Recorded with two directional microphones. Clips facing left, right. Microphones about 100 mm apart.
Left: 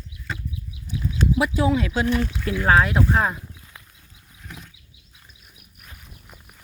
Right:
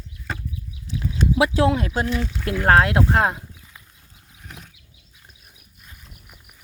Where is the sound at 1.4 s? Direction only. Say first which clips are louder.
Right 4 dB; 90° right.